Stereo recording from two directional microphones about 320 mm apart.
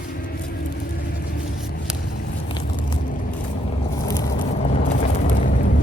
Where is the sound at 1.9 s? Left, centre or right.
Centre.